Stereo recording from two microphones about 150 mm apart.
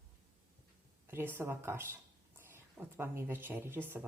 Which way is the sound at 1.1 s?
15° right (ahead or behind).